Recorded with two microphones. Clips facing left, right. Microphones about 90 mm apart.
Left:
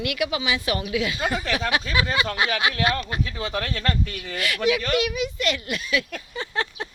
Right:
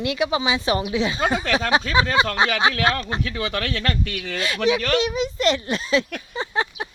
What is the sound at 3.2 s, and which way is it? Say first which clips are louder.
Speech: right 2 dB; 90° right.